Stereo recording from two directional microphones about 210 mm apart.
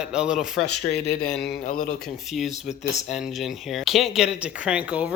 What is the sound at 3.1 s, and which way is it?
Speech, centre (ahead or behind).